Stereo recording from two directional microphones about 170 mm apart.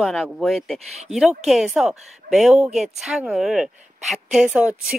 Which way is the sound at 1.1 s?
35° right (ahead or behind).